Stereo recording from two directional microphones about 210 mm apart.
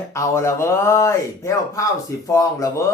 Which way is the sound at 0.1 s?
15° left (ahead or behind).